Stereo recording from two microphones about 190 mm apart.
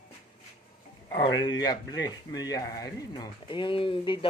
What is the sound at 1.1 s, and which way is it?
Speech, 20° left (ahead or behind).